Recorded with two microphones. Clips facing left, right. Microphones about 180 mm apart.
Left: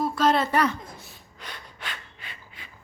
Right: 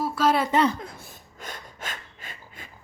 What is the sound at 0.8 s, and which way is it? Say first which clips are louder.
Gasp: right 3 dB; 60° right (ahead or behind).